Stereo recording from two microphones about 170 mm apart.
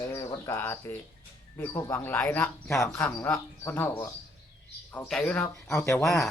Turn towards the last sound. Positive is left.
turn(degrees=15)  # may be behind; listen again after turning